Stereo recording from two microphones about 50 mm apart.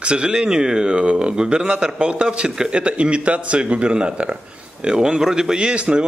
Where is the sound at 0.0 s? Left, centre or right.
Right.